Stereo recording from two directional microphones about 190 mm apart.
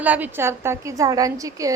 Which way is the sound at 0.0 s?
10° right (ahead or behind).